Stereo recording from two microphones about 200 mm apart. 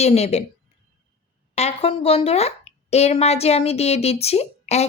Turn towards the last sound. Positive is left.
turn(degrees=30)  # may be behind; listen again after turning